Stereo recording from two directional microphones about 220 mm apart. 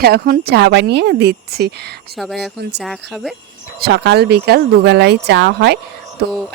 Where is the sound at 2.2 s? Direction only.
Centre (ahead or behind).